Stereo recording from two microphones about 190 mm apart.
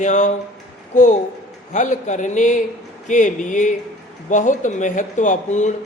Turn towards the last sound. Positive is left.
turn(degrees=40)  # may be behind; listen again after turning